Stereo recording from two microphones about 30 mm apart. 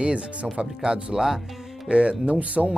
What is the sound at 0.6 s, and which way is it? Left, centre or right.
Speech, right.